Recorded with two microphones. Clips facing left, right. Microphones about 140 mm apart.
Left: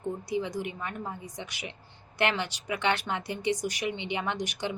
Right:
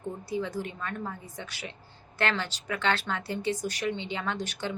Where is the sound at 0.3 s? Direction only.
15° left (ahead or behind).